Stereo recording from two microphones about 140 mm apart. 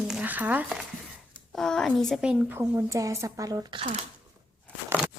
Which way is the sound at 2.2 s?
10° right (ahead or behind).